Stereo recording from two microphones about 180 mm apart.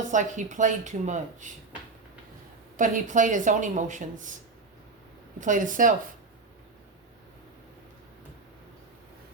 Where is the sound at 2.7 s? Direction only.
45° right (ahead or behind).